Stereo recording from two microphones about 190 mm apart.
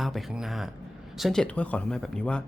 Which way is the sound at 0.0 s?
Centre (ahead or behind).